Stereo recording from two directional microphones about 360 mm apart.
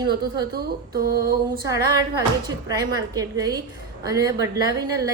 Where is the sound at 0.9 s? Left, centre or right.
Right.